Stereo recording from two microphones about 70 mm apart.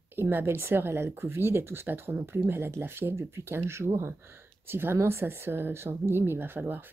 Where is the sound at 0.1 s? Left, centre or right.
Right.